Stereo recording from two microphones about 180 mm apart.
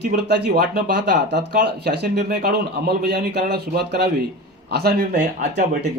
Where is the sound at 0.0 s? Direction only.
65° right (ahead or behind).